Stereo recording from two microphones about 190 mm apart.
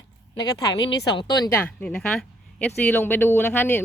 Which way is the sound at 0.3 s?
20° left (ahead or behind).